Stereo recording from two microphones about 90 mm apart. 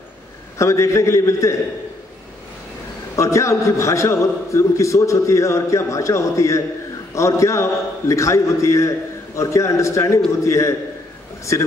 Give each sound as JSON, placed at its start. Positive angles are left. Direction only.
{"t": 0.6, "sound": "a man's voice", "side_deg": 35}
{"t": 3.2, "sound": "a man's voice", "side_deg": 35}